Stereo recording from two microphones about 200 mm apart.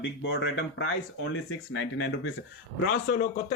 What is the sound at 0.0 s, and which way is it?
Speech, 55° left (ahead or behind).